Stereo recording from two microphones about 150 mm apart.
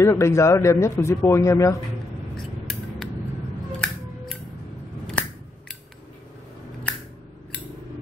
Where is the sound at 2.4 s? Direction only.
5° left (ahead or behind).